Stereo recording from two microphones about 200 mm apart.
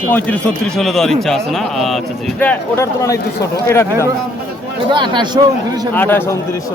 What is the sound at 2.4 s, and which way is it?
Speech, 10° left (ahead or behind).